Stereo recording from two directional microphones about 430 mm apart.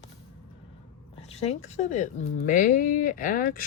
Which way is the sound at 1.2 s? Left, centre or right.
Centre.